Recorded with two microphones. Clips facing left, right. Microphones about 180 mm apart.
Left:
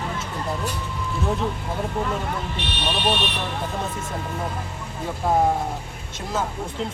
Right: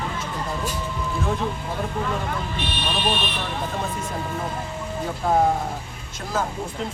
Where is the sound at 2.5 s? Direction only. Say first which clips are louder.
Even; 70° left (ahead or behind).